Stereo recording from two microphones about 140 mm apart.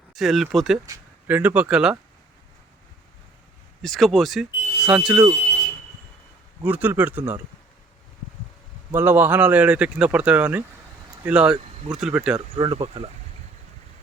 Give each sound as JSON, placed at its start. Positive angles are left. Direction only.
{"t": 0.1, "sound": "speech", "side_deg": 0}
{"t": 1.3, "sound": "speech", "side_deg": -10}
{"t": 3.8, "sound": "speech", "side_deg": 0}
{"t": 6.7, "sound": "speech", "side_deg": -15}
{"t": 8.9, "sound": "speech", "side_deg": -15}
{"t": 12.5, "sound": "speech", "side_deg": -40}